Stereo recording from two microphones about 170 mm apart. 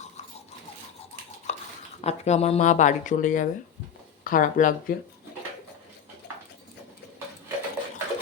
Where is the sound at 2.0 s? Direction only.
40° left (ahead or behind).